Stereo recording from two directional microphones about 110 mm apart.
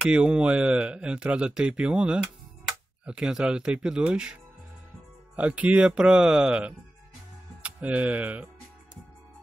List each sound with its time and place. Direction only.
0.0 s speech: 10° right (ahead or behind)